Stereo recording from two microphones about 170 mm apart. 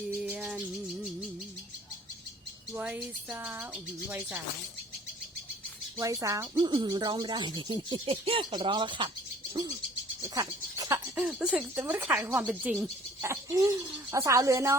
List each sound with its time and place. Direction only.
0.2 s rattle: 5° right (ahead or behind)
2.7 s speech: 10° right (ahead or behind)
6.0 s speech: 20° right (ahead or behind)
10.3 s speech: 20° right (ahead or behind)